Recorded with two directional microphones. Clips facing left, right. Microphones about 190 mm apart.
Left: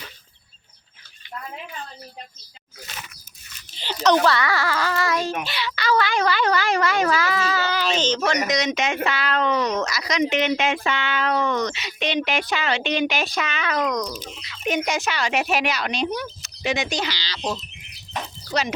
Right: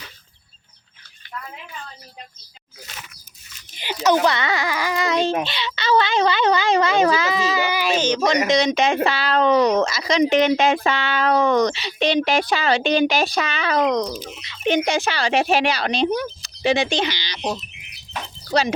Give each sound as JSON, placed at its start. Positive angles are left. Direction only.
{"t": 3.8, "sound": "a child's voice", "side_deg": -10}
{"t": 8.4, "sound": "a child's voice", "side_deg": -30}